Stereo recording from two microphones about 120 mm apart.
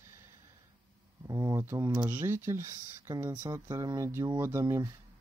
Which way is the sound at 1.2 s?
25° right (ahead or behind).